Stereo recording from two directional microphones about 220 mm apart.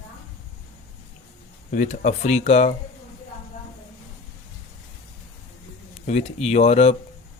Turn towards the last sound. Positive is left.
turn(degrees=30)  # may be behind; listen again after turning